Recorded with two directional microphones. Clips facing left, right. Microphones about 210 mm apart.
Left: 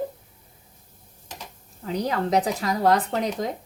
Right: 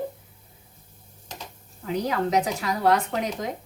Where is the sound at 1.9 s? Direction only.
35° left (ahead or behind).